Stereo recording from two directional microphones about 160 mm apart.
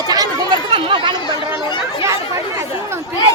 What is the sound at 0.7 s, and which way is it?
Speech, 30° right (ahead or behind).